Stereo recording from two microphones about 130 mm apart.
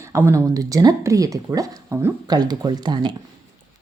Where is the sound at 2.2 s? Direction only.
30° right (ahead or behind).